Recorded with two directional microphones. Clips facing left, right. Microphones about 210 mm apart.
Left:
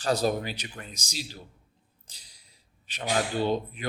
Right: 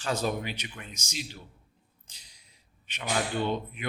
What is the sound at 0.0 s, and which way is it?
Speech, 35° left (ahead or behind).